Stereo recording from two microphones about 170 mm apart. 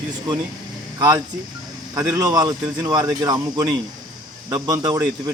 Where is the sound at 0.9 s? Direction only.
20° right (ahead or behind).